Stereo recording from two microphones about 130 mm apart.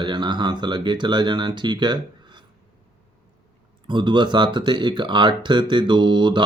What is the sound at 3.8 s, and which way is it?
Speech, 35° right (ahead or behind).